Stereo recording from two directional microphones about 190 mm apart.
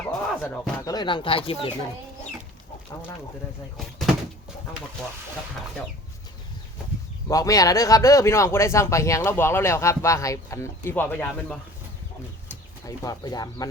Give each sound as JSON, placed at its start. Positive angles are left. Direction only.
{"t": 0.2, "sound": "a sound", "side_deg": 5}
{"t": 0.9, "sound": "speech", "side_deg": 25}
{"t": 3.8, "sound": "speech", "side_deg": 0}
{"t": 7.3, "sound": "speech", "side_deg": 20}
{"t": 12.8, "sound": "speech", "side_deg": 20}